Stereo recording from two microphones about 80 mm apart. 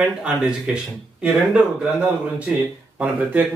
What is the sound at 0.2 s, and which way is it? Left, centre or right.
Speech, centre.